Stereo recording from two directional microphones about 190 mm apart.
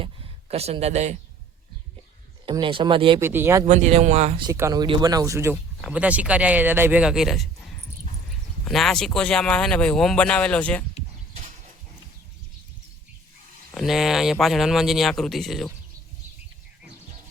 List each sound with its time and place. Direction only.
0.0 s a sound: 35° right (ahead or behind)
2.5 s speech: 25° right (ahead or behind)
3.2 s speech: 10° right (ahead or behind)
3.7 s speech: 35° right (ahead or behind)
4.4 s speech: 20° right (ahead or behind); by 7.4 s centre (ahead or behind)
8.6 s speech: centre (ahead or behind)
13.7 s speech: centre (ahead or behind)